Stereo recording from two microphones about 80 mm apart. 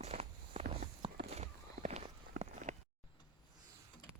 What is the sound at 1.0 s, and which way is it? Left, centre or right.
Horse, right.